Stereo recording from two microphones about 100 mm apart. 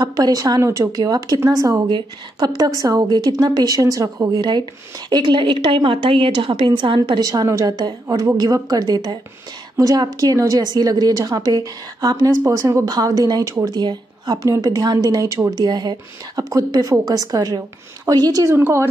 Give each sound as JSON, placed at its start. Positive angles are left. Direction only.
{"t": 0.0, "sound": "a woman's voice", "side_deg": -40}
{"t": 1.9, "sound": "a woman's voice", "side_deg": -45}
{"t": 7.2, "sound": "a woman's voice", "side_deg": -35}
{"t": 13.7, "sound": "a woman's voice", "side_deg": -45}